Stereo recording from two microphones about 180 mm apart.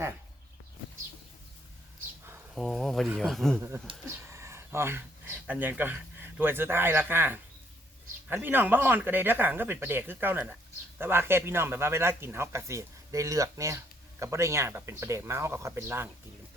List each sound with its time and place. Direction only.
2.6 s speech: centre (ahead or behind)
3.9 s speech: 30° right (ahead or behind)
4.3 s a man's voice: 15° right (ahead or behind)